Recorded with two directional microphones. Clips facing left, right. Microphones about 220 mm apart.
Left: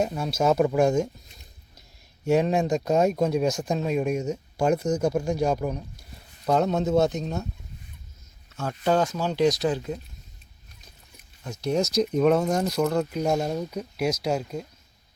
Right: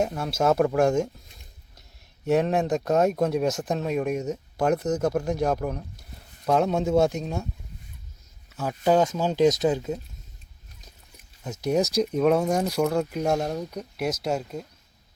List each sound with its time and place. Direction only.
0.0 s speech: 5° right (ahead or behind)
2.2 s a man's voice: centre (ahead or behind)
8.5 s speech: 10° right (ahead or behind)
9.5 s speech: 20° right (ahead or behind)
11.5 s speech: 15° right (ahead or behind)